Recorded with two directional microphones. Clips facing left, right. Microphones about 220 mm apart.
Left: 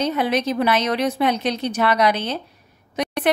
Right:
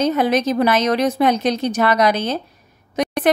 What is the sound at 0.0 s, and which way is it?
A woman's voice, 45° right (ahead or behind).